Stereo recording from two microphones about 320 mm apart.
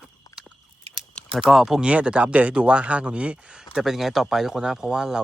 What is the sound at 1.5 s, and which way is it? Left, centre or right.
Speech, centre.